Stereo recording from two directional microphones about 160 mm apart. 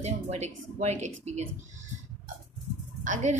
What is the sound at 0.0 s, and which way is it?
A woman's voice, 45° right (ahead or behind).